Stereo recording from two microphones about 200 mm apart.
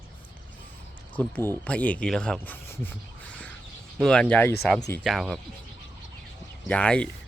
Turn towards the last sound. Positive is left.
turn(degrees=5)  # may be behind; listen again after turning